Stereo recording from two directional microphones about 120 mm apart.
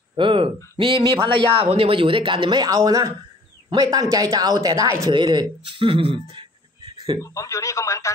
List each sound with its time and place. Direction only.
0.1 s speech: 45° right (ahead or behind); by 5.1 s 25° right (ahead or behind)
5.1 s speech: 40° right (ahead or behind)
7.2 s speech: 25° left (ahead or behind)